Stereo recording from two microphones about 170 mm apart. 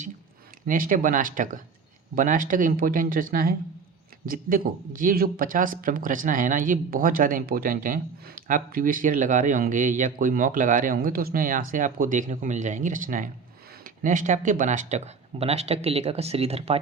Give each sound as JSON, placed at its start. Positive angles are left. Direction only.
{"t": 0.7, "sound": "speech", "side_deg": -55}